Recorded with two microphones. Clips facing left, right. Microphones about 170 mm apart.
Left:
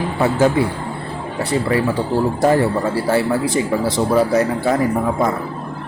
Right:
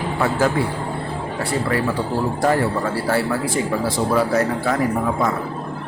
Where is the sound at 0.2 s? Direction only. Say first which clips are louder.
Left 4 dB; 20° left (ahead or behind).